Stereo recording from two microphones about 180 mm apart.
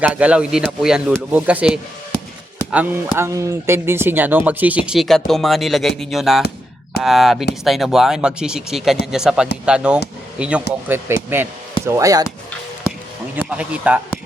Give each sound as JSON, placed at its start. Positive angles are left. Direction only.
{"t": 0.0, "sound": "speech", "side_deg": -5}
{"t": 13.3, "sound": "speech", "side_deg": -10}